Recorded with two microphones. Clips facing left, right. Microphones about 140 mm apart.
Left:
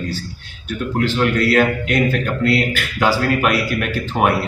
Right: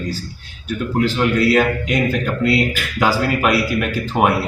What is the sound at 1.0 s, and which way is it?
Speech, 5° right (ahead or behind).